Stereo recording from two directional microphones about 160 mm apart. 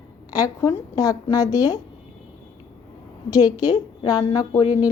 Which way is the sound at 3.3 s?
25° left (ahead or behind).